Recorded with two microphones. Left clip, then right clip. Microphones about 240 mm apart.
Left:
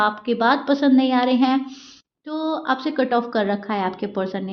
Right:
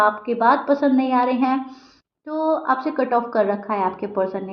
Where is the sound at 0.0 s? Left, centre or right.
Left.